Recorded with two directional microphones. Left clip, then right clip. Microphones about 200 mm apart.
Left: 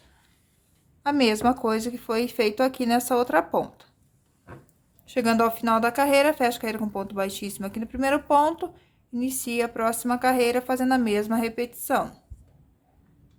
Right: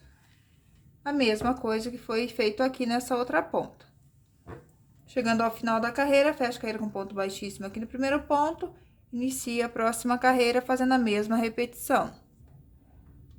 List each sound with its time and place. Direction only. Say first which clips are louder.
1.0 s speech: left 5 dB; 25° left (ahead or behind)
5.0 s speech: left 4 dB; 25° left (ahead or behind); by 12.2 s 10° left (ahead or behind)